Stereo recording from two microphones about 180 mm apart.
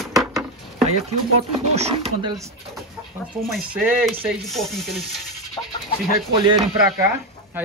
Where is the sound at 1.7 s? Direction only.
35° right (ahead or behind); by 2.5 s 20° right (ahead or behind).